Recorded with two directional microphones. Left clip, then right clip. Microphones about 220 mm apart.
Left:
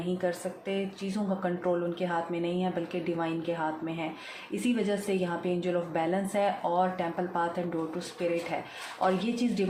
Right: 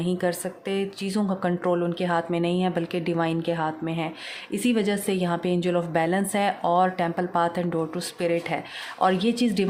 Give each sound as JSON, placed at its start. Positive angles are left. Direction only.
{"t": 0.2, "sound": "a woman's voice", "side_deg": -55}